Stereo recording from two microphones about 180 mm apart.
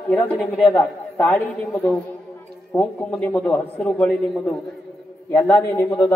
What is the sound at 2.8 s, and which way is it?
A man's voice, 5° left (ahead or behind).